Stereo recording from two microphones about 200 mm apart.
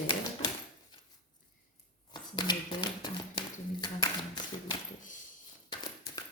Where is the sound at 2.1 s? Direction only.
20° left (ahead or behind).